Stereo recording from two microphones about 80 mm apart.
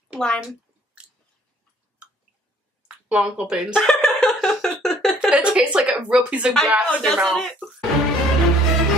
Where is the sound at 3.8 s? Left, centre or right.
Centre.